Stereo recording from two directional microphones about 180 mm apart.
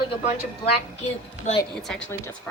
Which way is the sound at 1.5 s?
40° left (ahead or behind).